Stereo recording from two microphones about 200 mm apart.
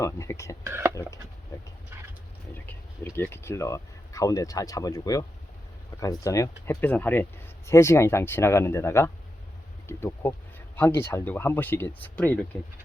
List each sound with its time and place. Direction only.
0.0 s speech: 15° left (ahead or behind)
0.6 s speech: 15° right (ahead or behind)
2.6 s speech: 10° left (ahead or behind)